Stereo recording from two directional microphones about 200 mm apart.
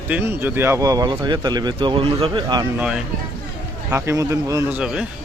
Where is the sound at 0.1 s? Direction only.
10° right (ahead or behind).